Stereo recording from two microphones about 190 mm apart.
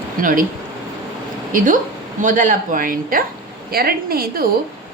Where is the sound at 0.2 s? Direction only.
45° right (ahead or behind).